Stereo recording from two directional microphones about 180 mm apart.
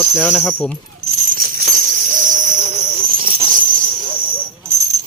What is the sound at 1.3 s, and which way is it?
Jingle bell, 55° right (ahead or behind).